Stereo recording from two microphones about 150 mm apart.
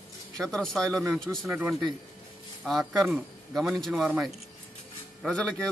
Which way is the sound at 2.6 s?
Centre (ahead or behind).